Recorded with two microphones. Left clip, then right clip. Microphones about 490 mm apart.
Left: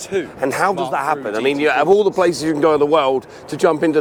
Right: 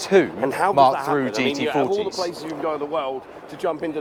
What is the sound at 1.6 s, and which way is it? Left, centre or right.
Speech, left.